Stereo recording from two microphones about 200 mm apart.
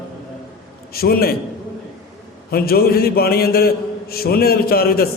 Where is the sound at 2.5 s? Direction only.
50° left (ahead or behind).